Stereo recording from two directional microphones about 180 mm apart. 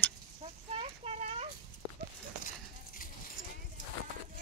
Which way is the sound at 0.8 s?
35° right (ahead or behind).